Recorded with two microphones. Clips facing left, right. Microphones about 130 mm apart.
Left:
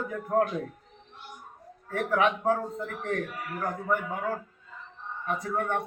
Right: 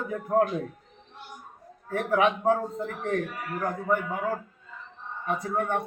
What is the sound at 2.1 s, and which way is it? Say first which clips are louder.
A man's voice: right 2 dB; 15° right (ahead or behind).